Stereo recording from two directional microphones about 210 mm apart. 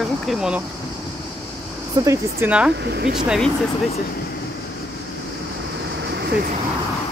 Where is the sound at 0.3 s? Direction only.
5° right (ahead or behind).